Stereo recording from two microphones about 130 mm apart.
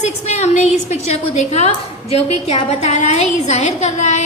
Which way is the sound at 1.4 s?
60° left (ahead or behind).